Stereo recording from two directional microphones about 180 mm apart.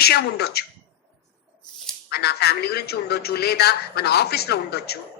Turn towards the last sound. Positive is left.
turn(degrees=60)  # may be behind; listen again after turning